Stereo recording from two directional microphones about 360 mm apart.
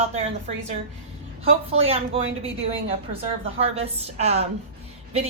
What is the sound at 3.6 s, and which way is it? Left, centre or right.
Speech, centre.